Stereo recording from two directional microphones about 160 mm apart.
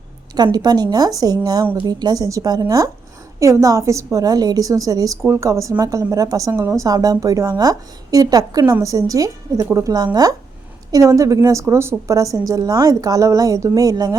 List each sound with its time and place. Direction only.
0.3 s a woman's voice: 25° right (ahead or behind)